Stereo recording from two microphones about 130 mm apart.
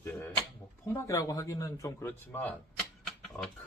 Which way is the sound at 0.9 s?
25° left (ahead or behind).